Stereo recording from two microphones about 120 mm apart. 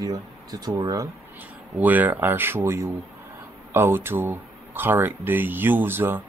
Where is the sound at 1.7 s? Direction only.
15° right (ahead or behind).